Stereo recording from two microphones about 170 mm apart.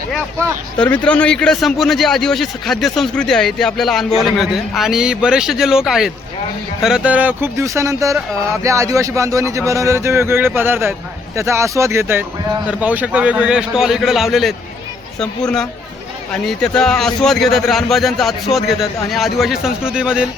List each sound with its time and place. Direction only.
0.8 s a man's voice: 5° left (ahead or behind)